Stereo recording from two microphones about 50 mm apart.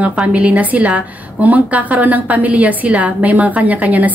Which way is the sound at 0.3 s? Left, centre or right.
Right.